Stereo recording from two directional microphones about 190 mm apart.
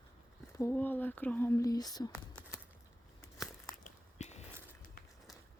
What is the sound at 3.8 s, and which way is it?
Biting, 35° left (ahead or behind).